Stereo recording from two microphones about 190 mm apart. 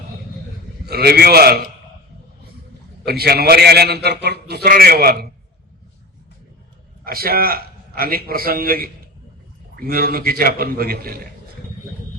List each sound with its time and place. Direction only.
0.9 s a man's voice: 55° right (ahead or behind)
3.1 s a man's voice: 55° right (ahead or behind)
7.0 s a man's voice: 50° right (ahead or behind)